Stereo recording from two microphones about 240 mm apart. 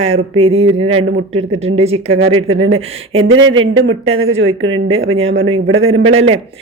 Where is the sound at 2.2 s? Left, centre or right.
Right.